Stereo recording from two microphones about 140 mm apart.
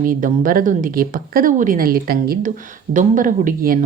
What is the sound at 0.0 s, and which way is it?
Speech, 75° right (ahead or behind).